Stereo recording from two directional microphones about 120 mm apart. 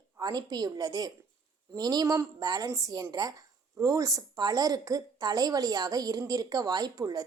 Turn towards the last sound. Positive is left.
turn(degrees=-30)  # may be behind; listen again after turning